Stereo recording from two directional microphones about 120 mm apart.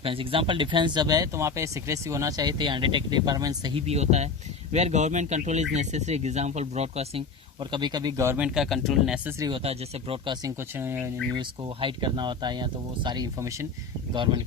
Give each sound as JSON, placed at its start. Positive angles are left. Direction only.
{"t": 0.0, "sound": "speech", "side_deg": -50}
{"t": 3.8, "sound": "speech", "side_deg": -60}
{"t": 7.6, "sound": "speech", "side_deg": -40}
{"t": 8.4, "sound": "speech", "side_deg": 0}
{"t": 9.5, "sound": "speech", "side_deg": -50}
{"t": 10.8, "sound": "speech", "side_deg": -20}
{"t": 11.3, "sound": "speech", "side_deg": -40}
{"t": 14.1, "sound": "speech", "side_deg": -45}